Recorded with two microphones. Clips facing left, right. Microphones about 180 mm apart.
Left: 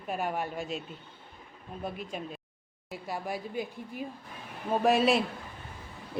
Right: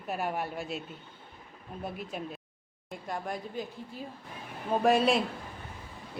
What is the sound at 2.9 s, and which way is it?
A woman's voice, 5° left (ahead or behind).